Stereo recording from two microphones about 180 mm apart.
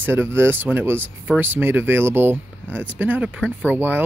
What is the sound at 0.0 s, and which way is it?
Speech, 10° right (ahead or behind).